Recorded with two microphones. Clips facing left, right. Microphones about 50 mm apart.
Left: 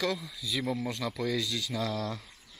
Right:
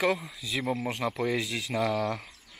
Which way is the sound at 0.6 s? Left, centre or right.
Right.